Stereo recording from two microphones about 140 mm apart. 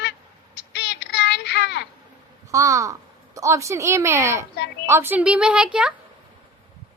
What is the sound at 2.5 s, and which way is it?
A woman's voice, 20° right (ahead or behind).